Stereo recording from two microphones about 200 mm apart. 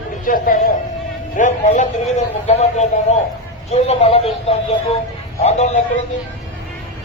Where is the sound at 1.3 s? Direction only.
40° left (ahead or behind).